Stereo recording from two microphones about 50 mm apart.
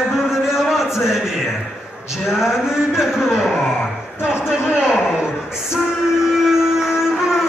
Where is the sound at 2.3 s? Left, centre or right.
Centre.